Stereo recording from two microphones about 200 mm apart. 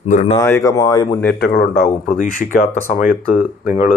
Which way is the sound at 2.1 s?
40° left (ahead or behind).